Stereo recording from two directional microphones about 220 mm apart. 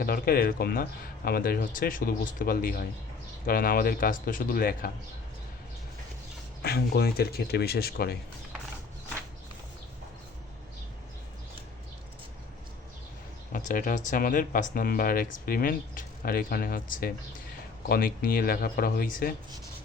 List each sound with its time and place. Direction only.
0.0 s speech: 40° left (ahead or behind)
6.6 s speech: 45° left (ahead or behind)
13.5 s speech: 40° left (ahead or behind)